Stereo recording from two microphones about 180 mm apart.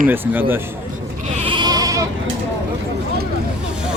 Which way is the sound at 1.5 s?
25° right (ahead or behind).